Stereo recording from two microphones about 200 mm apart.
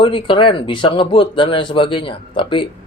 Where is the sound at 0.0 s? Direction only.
25° left (ahead or behind).